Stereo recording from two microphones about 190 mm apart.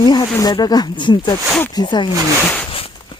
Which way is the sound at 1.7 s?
25° left (ahead or behind).